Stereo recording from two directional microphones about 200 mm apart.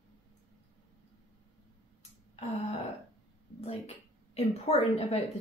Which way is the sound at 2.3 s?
35° left (ahead or behind).